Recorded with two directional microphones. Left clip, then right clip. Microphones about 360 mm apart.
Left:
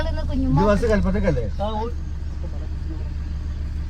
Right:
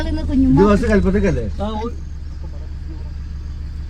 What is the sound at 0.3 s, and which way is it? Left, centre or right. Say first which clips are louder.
A man's voice: right 6 dB; left.